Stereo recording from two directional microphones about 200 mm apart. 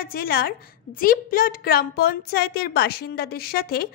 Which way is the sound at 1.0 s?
45° left (ahead or behind).